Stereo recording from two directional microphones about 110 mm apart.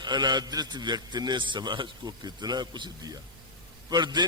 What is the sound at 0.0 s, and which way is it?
A man's voice, 40° right (ahead or behind).